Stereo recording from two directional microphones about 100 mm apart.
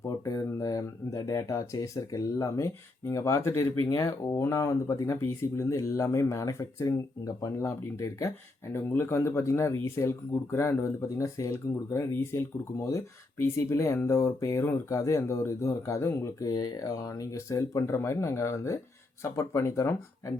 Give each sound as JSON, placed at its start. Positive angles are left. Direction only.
{"t": 0.0, "sound": "speech", "side_deg": 35}